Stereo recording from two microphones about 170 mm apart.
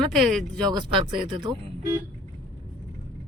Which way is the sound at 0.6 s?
25° right (ahead or behind).